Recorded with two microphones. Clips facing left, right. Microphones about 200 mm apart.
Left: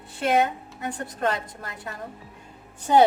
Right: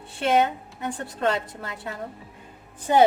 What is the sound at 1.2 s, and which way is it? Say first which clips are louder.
Speech: right 2 dB; 25° right (ahead or behind).